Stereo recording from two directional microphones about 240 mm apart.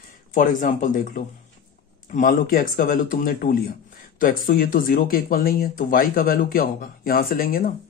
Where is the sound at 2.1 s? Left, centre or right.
Left.